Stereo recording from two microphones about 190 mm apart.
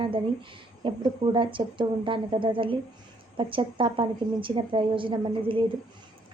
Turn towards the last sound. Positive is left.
turn(degrees=-25)  # may be behind; listen again after turning